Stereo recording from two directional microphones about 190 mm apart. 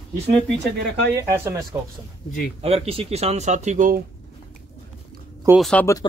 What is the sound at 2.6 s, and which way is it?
Speech, 30° right (ahead or behind).